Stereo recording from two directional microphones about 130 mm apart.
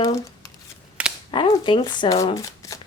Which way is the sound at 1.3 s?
40° left (ahead or behind).